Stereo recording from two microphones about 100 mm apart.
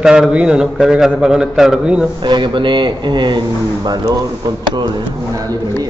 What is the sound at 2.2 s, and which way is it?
A man's voice, 50° right (ahead or behind).